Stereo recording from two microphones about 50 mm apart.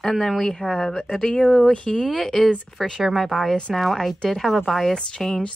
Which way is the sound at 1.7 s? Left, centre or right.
Left.